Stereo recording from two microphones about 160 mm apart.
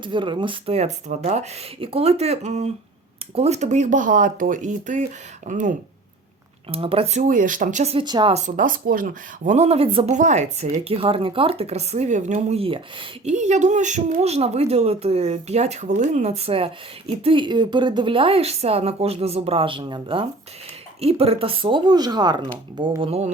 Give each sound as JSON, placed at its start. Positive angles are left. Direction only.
{"t": 0.0, "sound": "speech", "side_deg": -30}
{"t": 6.7, "sound": "speech", "side_deg": -35}
{"t": 7.2, "sound": "speech", "side_deg": -55}
{"t": 7.9, "sound": "speech", "side_deg": -30}
{"t": 8.3, "sound": "speech", "side_deg": -45}
{"t": 10.2, "sound": "speech", "side_deg": -45}
{"t": 13.3, "sound": "speech", "side_deg": -50}
{"t": 23.0, "sound": "speech", "side_deg": -40}